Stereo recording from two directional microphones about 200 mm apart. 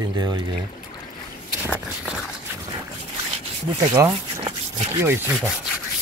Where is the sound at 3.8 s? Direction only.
20° right (ahead or behind).